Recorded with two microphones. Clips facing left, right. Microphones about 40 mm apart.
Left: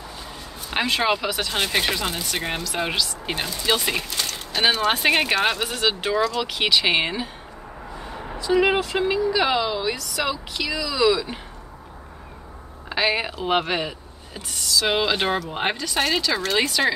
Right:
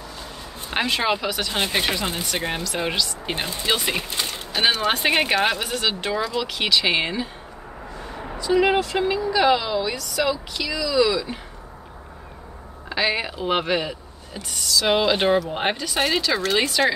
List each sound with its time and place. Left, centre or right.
0.7 s speech: centre
4.1 s a sound: centre
4.6 s speech: centre
8.0 s a sound: centre
8.4 s speech: centre
12.9 s speech: centre